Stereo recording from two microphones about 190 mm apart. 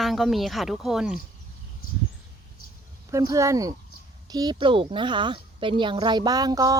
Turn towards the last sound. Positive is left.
turn(degrees=-20)  # may be behind; listen again after turning